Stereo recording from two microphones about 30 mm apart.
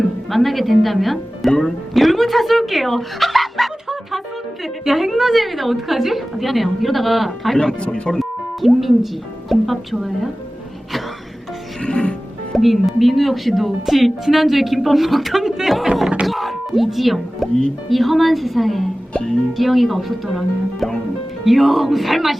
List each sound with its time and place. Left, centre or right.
0.3 s a woman's voice: centre
7.5 s speech: left
7.8 s speech: left
8.2 s music: centre
9.5 s a woman's voice: centre
11.8 s music: left
12.5 s a woman's voice: centre
16.2 s music: centre
17.8 s a woman's voice: centre
19.1 s speech: left
19.5 s a woman's voice: centre